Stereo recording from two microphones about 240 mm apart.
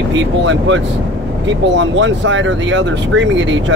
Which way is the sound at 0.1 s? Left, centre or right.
Right.